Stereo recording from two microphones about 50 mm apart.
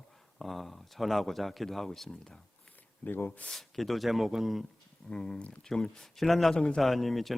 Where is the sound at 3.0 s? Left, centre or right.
Left.